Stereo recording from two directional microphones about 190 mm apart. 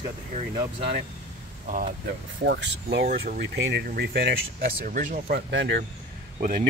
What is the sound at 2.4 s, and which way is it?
Speech, 65° right (ahead or behind).